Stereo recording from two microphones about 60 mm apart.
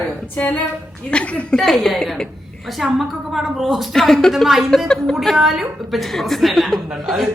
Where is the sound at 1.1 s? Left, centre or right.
Left.